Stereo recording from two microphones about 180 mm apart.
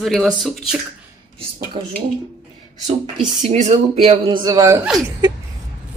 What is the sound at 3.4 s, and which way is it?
Speech, 40° right (ahead or behind).